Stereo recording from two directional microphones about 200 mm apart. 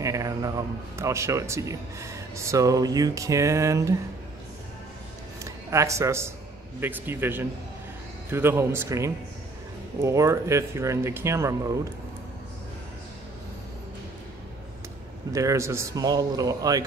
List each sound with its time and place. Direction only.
0.0 s speech: 15° right (ahead or behind)
5.4 s speech: 15° right (ahead or behind)
15.3 s speech: 15° right (ahead or behind)